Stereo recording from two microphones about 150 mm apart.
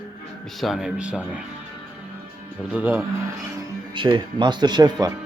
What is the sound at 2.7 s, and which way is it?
Speech, 15° right (ahead or behind).